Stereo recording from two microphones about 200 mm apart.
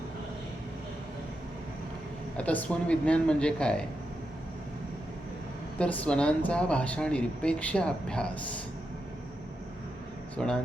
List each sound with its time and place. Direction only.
2.4 s speech: 5° left (ahead or behind)
5.8 s speech: 5° left (ahead or behind)
10.3 s speech: 5° left (ahead or behind)